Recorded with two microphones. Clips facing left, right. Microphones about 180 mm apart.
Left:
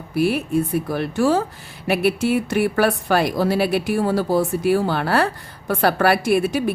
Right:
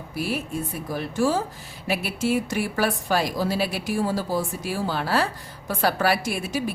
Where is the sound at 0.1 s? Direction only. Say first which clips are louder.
Left 9 dB; 60° left (ahead or behind).